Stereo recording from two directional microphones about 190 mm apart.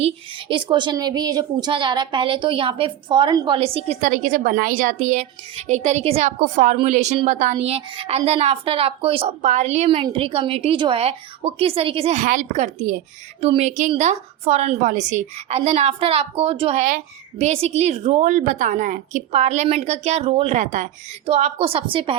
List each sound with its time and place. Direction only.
0.0 s a woman's voice: 25° right (ahead or behind)